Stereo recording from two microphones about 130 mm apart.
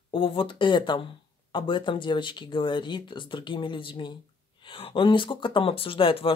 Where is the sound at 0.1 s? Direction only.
40° left (ahead or behind).